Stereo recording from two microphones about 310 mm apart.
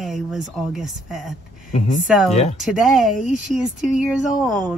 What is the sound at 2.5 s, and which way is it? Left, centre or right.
Speech, centre.